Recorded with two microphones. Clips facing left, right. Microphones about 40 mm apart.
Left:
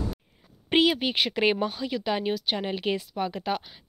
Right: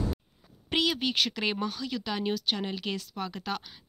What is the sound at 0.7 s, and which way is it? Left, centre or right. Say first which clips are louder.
Speech: left 5 dB; left.